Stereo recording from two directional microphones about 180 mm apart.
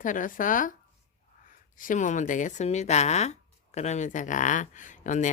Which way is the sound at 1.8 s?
45° left (ahead or behind).